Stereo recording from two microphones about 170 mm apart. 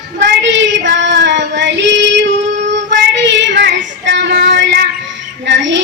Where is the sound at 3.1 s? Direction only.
90° right.